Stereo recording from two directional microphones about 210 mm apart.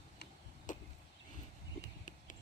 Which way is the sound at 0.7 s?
35° left (ahead or behind).